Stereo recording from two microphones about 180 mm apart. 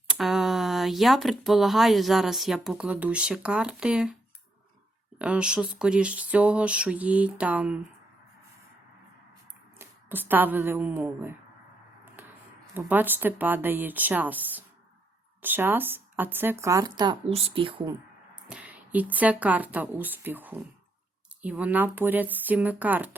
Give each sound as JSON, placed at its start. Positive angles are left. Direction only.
{"t": 0.1, "sound": "speech", "side_deg": 0}
{"t": 5.2, "sound": "speech", "side_deg": -5}
{"t": 9.7, "sound": "a woman's voice", "side_deg": -10}
{"t": 12.7, "sound": "speech", "side_deg": -10}
{"t": 18.4, "sound": "speech", "side_deg": -5}